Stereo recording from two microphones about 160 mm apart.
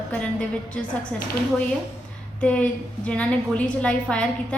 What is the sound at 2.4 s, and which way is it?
A woman's voice, 5° left (ahead or behind).